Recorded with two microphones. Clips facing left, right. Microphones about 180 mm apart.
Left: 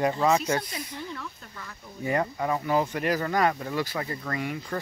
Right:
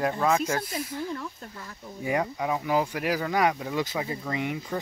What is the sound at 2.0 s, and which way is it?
Speech, 10° right (ahead or behind).